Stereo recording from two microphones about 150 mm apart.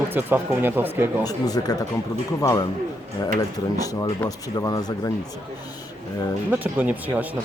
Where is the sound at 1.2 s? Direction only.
25° left (ahead or behind).